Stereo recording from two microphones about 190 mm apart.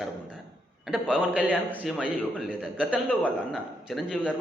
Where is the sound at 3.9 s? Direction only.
Centre (ahead or behind).